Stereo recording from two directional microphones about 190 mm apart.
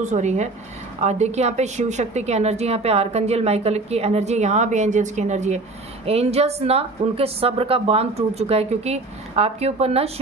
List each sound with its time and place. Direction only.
0.0 s a woman's voice: 40° right (ahead or behind)